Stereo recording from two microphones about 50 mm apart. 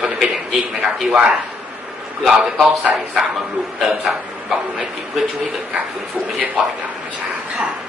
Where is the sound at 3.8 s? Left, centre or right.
Centre.